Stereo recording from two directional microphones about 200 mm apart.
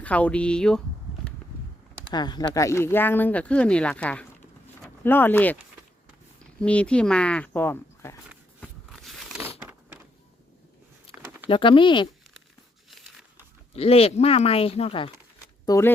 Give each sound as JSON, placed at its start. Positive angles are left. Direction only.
{"t": 0.0, "sound": "speech", "side_deg": 5}
{"t": 2.0, "sound": "speech", "side_deg": 20}
{"t": 6.6, "sound": "speech", "side_deg": 5}
{"t": 8.3, "sound": "a sound", "side_deg": 0}
{"t": 11.1, "sound": "a sound", "side_deg": 25}
{"t": 11.4, "sound": "speech", "side_deg": 25}
{"t": 13.7, "sound": "speech", "side_deg": 30}
{"t": 15.6, "sound": "speech", "side_deg": 15}